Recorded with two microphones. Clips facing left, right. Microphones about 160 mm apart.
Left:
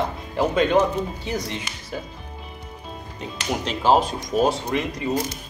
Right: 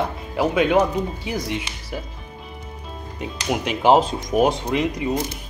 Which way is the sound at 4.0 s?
25° right (ahead or behind).